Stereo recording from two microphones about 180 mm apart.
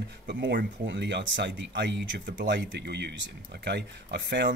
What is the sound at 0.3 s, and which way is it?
Speech, 70° right (ahead or behind).